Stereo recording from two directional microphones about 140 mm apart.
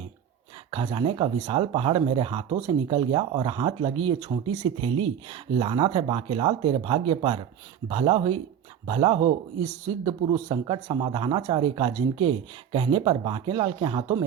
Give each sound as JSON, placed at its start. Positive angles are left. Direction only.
{"t": 0.7, "sound": "speech", "side_deg": -35}
{"t": 10.0, "sound": "speech", "side_deg": -30}